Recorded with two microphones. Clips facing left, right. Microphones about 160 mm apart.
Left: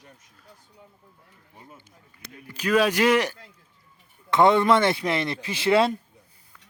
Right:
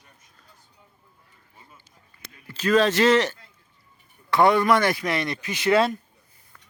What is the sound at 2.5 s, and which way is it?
Speech, 10° left (ahead or behind).